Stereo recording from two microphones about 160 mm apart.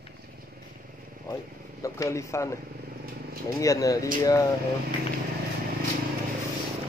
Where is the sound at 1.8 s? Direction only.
20° left (ahead or behind).